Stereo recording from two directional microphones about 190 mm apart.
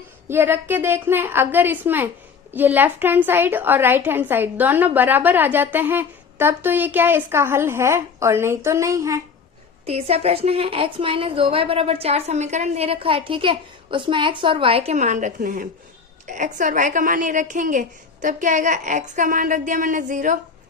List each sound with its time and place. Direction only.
0.3 s a woman's voice: 10° right (ahead or behind)
9.8 s a woman's voice: 30° right (ahead or behind)